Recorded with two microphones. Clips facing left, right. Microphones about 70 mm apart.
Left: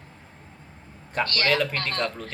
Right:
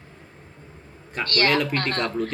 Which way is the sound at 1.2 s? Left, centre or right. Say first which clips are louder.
Right 7 dB; right.